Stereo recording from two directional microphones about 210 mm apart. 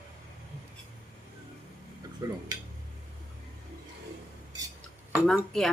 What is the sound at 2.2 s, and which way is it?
Speech, 20° right (ahead or behind).